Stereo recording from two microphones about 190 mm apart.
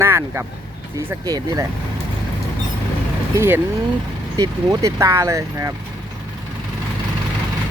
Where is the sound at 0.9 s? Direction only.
20° right (ahead or behind).